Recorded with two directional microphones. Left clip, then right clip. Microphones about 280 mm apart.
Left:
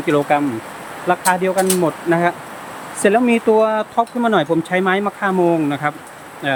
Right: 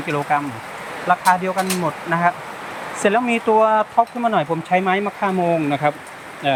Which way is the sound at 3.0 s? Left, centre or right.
Centre.